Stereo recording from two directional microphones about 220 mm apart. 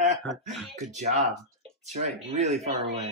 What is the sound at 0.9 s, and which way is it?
Speech, 30° right (ahead or behind).